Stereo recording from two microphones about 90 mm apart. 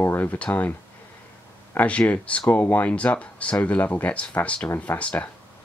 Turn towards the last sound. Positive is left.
turn(degrees=15)  # may be behind; listen again after turning